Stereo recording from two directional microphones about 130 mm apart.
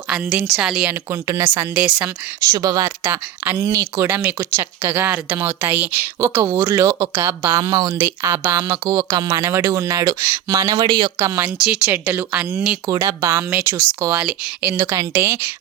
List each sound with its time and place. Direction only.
0.1 s speech: 5° right (ahead or behind)
1.1 s speech: 25° right (ahead or behind)
1.5 s speech: 10° right (ahead or behind)
2.5 s speech: 25° right (ahead or behind)
8.0 s speech: 20° right (ahead or behind)
10.8 s speech: 40° right (ahead or behind)
11.3 s speech: 15° right (ahead or behind)
12.9 s speech: 25° right (ahead or behind)